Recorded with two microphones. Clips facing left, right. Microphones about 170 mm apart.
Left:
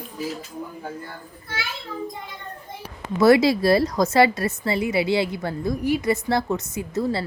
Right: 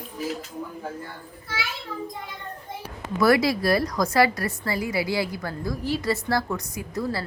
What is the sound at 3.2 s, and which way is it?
A woman's voice, 25° left (ahead or behind).